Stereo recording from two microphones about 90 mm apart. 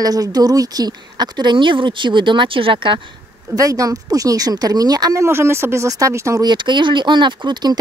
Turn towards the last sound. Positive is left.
turn(degrees=-55)  # may be behind; listen again after turning